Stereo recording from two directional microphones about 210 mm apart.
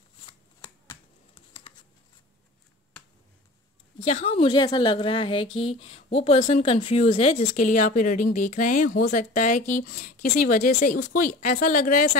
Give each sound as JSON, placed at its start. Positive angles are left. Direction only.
{"t": 0.3, "sound": "shuffling cards", "side_deg": 25}
{"t": 4.0, "sound": "a woman's voice", "side_deg": 30}